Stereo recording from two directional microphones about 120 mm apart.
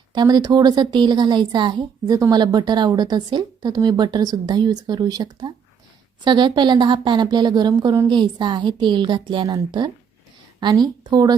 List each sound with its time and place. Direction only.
0.1 s a woman's voice: 35° right (ahead or behind)